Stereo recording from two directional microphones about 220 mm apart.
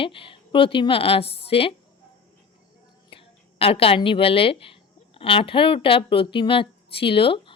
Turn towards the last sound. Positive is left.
turn(degrees=25)  # may be behind; listen again after turning